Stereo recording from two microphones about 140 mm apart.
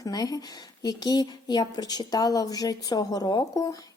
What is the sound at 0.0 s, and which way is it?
A woman's voice, 30° left (ahead or behind).